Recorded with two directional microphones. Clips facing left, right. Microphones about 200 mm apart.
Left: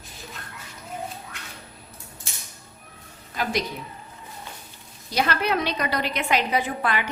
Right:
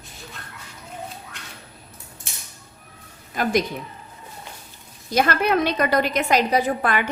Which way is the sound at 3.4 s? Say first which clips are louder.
Right 4 dB; 50° right (ahead or behind).